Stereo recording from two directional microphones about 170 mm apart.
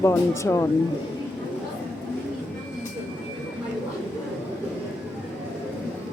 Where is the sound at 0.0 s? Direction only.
15° left (ahead or behind).